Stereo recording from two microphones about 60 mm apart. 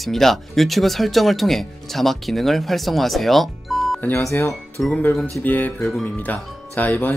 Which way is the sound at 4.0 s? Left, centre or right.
Left.